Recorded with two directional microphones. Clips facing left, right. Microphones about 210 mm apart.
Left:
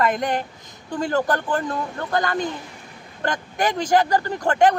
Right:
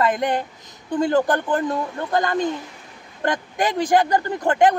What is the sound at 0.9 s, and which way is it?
Speech, 20° right (ahead or behind).